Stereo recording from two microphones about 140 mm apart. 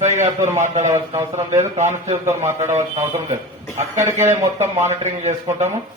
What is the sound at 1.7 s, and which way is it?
A man's voice, 55° right (ahead or behind).